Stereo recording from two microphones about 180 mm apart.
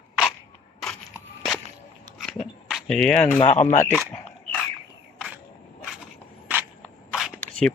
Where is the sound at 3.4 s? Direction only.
35° left (ahead or behind).